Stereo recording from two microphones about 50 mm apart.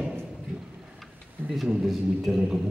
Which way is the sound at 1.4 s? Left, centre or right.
Right.